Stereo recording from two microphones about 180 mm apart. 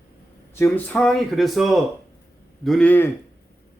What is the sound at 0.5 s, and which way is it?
Speech, 10° left (ahead or behind).